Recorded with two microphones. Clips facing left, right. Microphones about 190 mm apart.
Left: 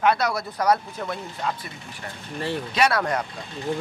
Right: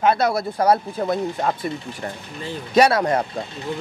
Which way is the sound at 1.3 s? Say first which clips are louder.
Right 7 dB; 45° right (ahead or behind).